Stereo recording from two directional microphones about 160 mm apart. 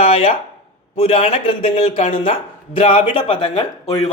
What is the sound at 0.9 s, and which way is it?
A man's voice, 35° left (ahead or behind).